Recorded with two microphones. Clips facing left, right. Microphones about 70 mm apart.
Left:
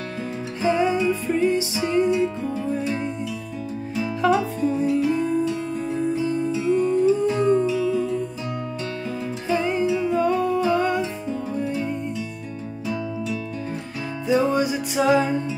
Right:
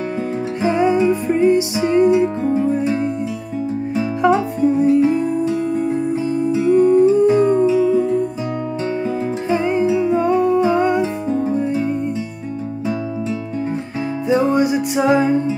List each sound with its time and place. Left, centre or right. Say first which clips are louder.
0.6 s music: right 4 dB; right
9.5 s music: right 4 dB; right
14.2 s music: right 4 dB; right